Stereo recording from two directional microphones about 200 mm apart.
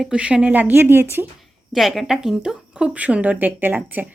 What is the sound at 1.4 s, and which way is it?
Speech, centre (ahead or behind).